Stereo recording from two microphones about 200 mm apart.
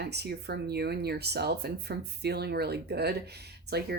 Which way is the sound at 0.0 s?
55° right (ahead or behind).